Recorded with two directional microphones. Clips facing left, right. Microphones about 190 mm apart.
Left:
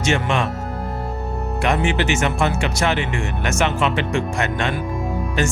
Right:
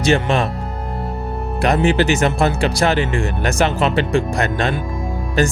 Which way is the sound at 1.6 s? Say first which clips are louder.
Right 5 dB; 35° right (ahead or behind).